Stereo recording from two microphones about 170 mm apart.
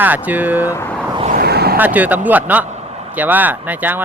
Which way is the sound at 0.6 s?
15° left (ahead or behind).